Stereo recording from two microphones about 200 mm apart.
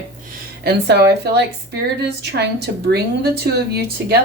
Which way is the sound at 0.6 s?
55° right (ahead or behind).